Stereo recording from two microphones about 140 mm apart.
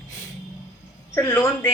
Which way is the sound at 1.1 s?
15° left (ahead or behind).